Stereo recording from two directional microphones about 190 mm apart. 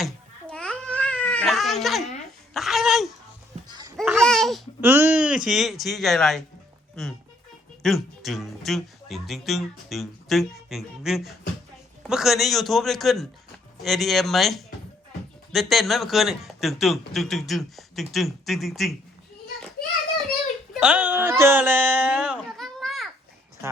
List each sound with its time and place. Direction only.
0.0 s cat: 5° left (ahead or behind)
2.5 s babbling: centre (ahead or behind)
3.7 s a sound: 20° right (ahead or behind)
3.9 s babbling: 5° right (ahead or behind)
4.8 s speech: 10° right (ahead or behind)
7.8 s speech: centre (ahead or behind)
20.7 s a sound: 5° right (ahead or behind)